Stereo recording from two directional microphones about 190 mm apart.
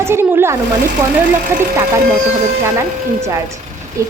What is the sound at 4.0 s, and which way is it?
Speech, 15° right (ahead or behind).